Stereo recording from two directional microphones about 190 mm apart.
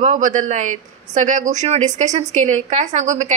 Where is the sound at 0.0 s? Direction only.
40° right (ahead or behind).